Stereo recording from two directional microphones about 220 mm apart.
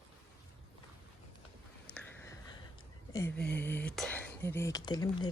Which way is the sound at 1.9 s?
5° left (ahead or behind).